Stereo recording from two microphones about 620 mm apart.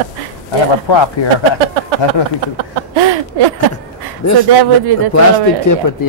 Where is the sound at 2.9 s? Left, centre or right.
Right.